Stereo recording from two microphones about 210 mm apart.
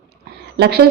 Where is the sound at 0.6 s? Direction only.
50° right (ahead or behind).